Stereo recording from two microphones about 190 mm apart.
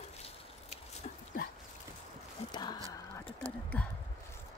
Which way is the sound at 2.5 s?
20° left (ahead or behind).